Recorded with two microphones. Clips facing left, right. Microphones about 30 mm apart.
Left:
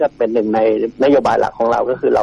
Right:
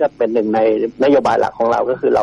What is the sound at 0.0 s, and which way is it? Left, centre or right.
A man's voice, centre.